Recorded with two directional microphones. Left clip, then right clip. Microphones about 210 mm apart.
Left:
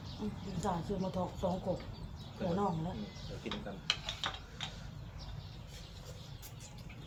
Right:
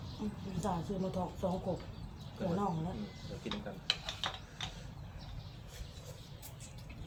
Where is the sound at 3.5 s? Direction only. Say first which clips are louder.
Even; 10° right (ahead or behind).